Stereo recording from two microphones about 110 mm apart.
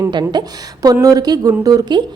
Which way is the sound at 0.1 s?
45° right (ahead or behind).